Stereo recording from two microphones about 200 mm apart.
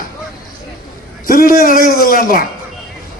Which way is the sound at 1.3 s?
45° left (ahead or behind).